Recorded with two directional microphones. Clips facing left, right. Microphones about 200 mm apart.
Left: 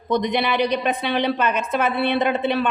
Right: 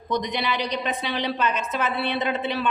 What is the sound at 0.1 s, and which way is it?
A woman's voice, 55° left (ahead or behind).